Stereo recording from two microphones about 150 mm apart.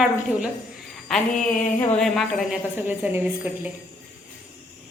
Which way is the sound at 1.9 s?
5° left (ahead or behind).